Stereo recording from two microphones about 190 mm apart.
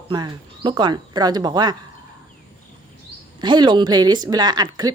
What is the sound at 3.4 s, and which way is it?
Speech, 25° right (ahead or behind).